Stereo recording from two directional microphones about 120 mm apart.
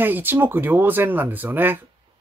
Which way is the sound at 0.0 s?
15° right (ahead or behind).